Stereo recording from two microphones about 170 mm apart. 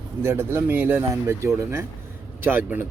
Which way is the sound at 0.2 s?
15° right (ahead or behind).